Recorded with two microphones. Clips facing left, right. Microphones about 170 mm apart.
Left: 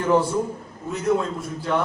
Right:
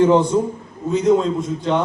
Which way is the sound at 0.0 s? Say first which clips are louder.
Right 6 dB; 20° right (ahead or behind).